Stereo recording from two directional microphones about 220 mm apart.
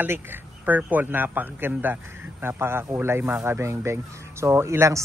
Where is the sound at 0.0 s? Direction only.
10° right (ahead or behind).